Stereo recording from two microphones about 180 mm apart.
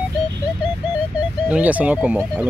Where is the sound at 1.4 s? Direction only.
10° right (ahead or behind).